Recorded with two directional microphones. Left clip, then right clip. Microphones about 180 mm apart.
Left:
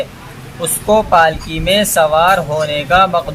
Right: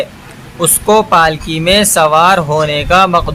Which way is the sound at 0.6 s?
40° right (ahead or behind).